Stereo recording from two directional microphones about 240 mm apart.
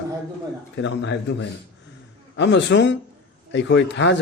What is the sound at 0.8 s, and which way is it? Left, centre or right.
A man's voice, left.